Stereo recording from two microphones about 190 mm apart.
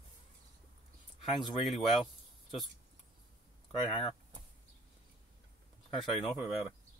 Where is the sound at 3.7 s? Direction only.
35° left (ahead or behind).